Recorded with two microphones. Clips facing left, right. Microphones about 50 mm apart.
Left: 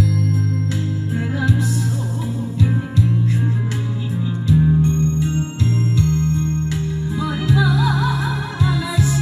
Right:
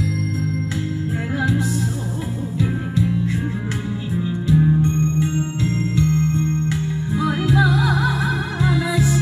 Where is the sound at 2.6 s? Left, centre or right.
Centre.